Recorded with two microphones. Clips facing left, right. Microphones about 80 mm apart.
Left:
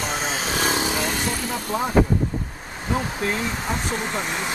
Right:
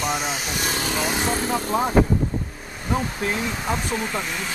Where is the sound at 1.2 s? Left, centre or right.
Right.